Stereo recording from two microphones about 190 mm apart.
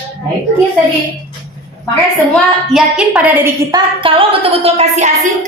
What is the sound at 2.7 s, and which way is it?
Speech, centre (ahead or behind).